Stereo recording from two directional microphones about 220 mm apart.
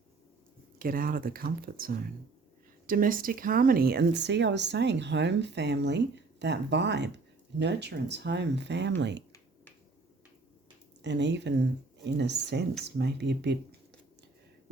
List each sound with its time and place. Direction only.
0.8 s speech: 40° right (ahead or behind)
11.0 s speech: 50° right (ahead or behind)